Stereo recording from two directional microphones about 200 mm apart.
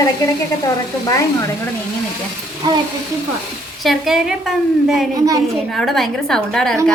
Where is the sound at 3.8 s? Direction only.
Centre (ahead or behind).